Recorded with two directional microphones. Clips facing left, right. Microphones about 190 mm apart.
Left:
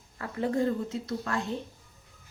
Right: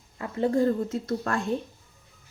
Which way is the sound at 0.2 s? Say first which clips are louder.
Right 4 dB; 25° right (ahead or behind).